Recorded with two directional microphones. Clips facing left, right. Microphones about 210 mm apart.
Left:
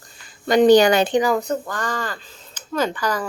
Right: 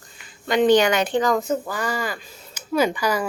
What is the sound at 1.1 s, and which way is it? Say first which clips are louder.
Speech: left 2 dB; 10° left (ahead or behind).